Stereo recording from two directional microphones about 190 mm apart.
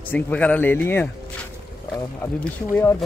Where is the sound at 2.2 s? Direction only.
10° left (ahead or behind).